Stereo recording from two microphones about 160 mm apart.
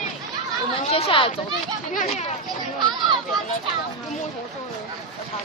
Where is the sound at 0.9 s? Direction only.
35° left (ahead or behind).